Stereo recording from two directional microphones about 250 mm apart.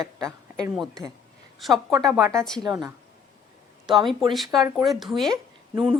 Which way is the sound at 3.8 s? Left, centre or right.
Centre.